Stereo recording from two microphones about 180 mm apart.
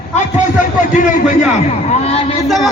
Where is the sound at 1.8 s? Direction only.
35° left (ahead or behind).